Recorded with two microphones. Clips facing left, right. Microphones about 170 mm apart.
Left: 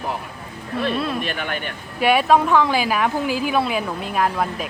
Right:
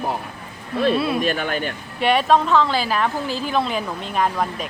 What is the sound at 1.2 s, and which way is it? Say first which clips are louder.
Speech: right 4 dB; 40° right (ahead or behind).